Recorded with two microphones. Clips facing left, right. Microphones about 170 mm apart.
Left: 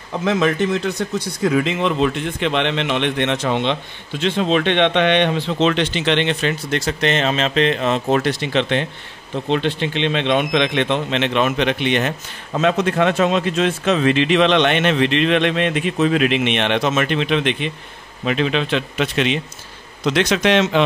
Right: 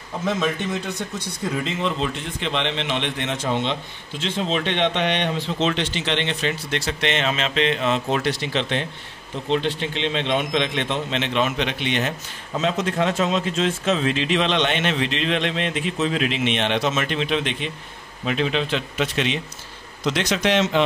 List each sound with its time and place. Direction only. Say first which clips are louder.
0.2 s a man's voice: left 6 dB; 80° left; by 6.5 s 65° left (ahead or behind)
6.7 s a man's voice: left 6 dB; 40° left (ahead or behind); by 20.8 s 80° left